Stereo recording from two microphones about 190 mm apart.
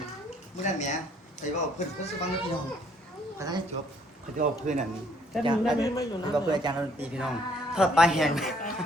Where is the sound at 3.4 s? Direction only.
20° right (ahead or behind).